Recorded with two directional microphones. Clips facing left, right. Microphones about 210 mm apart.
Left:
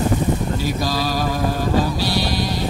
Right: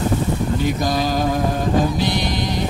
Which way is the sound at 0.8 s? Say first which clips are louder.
Right 2 dB; 20° right (ahead or behind).